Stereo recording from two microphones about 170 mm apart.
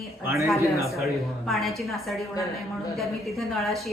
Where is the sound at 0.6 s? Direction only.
20° left (ahead or behind).